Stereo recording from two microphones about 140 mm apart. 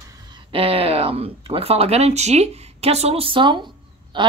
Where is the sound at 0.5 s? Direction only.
40° right (ahead or behind).